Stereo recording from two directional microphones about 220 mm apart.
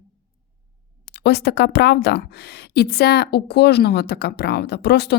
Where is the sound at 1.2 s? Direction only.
50° left (ahead or behind).